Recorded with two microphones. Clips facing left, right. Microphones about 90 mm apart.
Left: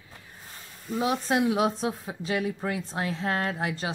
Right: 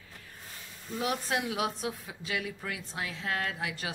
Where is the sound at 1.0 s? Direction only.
25° left (ahead or behind).